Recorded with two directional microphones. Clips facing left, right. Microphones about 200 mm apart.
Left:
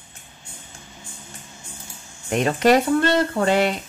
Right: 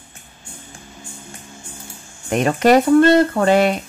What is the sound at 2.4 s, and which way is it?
A woman's voice, 50° right (ahead or behind).